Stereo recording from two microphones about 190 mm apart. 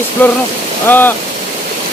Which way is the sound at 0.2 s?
10° left (ahead or behind).